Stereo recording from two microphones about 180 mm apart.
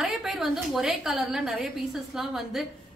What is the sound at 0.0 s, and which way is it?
A woman's voice, centre (ahead or behind).